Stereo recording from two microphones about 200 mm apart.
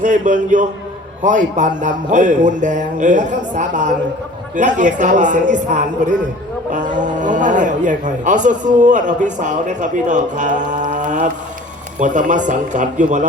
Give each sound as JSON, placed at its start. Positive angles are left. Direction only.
{"t": 0.0, "sound": "speech", "side_deg": -40}